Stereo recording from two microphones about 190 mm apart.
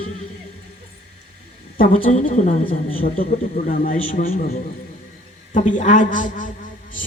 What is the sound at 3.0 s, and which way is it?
Speech, 50° left (ahead or behind).